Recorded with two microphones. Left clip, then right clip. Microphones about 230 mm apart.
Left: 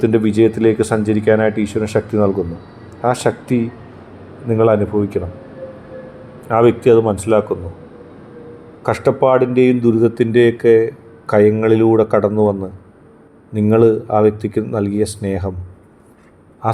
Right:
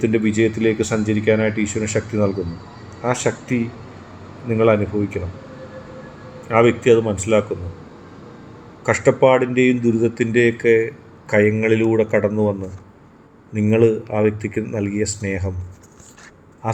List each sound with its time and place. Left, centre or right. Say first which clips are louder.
0.0 s speech: left 5 dB; centre
6.5 s speech: left 3 dB; left
8.8 s speech: even; centre
10.0 s speech: left 4 dB; left
10.4 s speech: left 4 dB; centre
13.7 s speech: left 4 dB; centre